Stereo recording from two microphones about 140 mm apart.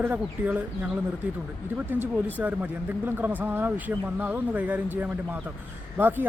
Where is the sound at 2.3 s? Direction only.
10° right (ahead or behind).